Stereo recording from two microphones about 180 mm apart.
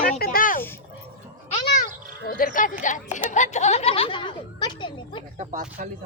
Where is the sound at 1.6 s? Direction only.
55° left (ahead or behind).